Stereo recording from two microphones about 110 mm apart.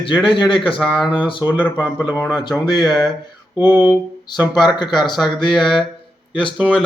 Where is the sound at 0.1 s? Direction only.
5° right (ahead or behind).